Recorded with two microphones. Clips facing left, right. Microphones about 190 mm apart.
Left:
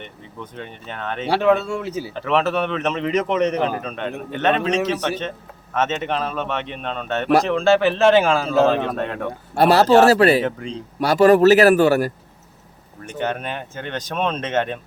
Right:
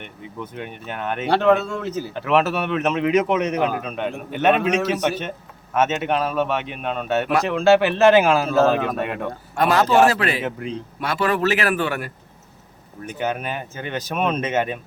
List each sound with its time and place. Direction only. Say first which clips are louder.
0.0 s speech: right 2 dB; 10° right (ahead or behind)
1.3 s speech: even; 5° left (ahead or behind)
2.1 s speech: even; 5° right (ahead or behind)
9.6 s a man's voice: left 3 dB; 35° left (ahead or behind)
10.4 s speech: left 2 dB; 5° right (ahead or behind)
11.0 s a man's voice: left 9 dB; 40° left (ahead or behind)
13.0 s speech: even; 5° right (ahead or behind)